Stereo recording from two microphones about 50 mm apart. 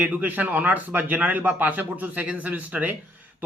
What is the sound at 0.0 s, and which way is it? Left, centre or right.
Speech, right.